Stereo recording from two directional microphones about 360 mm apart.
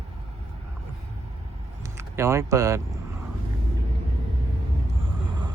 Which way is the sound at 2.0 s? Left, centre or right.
Centre.